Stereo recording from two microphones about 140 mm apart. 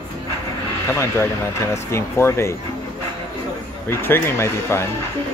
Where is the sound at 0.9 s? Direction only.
20° left (ahead or behind).